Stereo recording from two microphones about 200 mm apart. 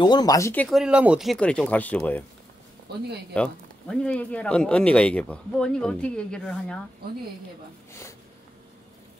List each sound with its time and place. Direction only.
0.0 s speech: 20° left (ahead or behind)
0.7 s speech: 5° right (ahead or behind)
2.9 s speech: 55° right (ahead or behind)
3.3 s speech: 5° left (ahead or behind)